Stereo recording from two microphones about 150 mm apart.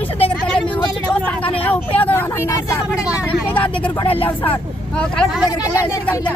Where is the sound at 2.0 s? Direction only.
15° left (ahead or behind).